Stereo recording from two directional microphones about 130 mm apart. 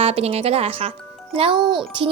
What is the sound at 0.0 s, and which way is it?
A child's voice, 50° right (ahead or behind).